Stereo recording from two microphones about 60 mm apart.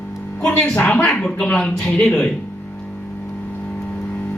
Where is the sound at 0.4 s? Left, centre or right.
Left.